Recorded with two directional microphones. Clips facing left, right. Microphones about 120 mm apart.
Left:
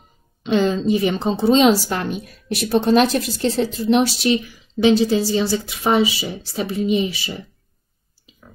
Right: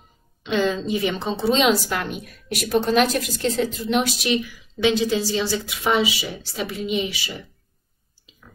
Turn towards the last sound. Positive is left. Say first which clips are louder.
# left 5 dB
turn(degrees=35)  # may be behind; listen again after turning